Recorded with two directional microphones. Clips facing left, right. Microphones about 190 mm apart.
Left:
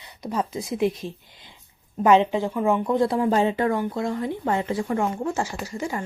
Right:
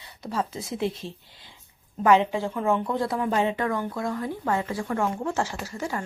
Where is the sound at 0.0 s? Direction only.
15° left (ahead or behind).